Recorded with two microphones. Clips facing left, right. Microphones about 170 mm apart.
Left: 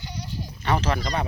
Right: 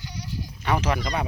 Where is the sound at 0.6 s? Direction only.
10° right (ahead or behind).